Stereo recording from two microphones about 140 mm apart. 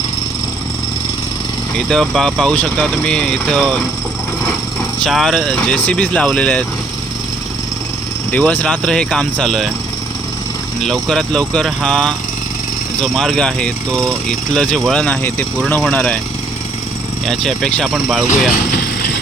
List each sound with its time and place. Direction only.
1.7 s speech: 5° left (ahead or behind)
5.0 s speech: centre (ahead or behind)
8.3 s speech: 10° left (ahead or behind)
10.8 s speech: 5° left (ahead or behind)
17.2 s speech: 5° left (ahead or behind)
18.3 s speech: 70° left (ahead or behind)